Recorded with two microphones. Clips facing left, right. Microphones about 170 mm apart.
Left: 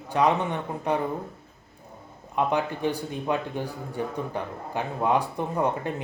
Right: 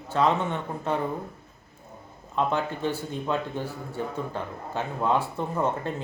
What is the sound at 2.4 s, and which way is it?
Speech, 15° left (ahead or behind).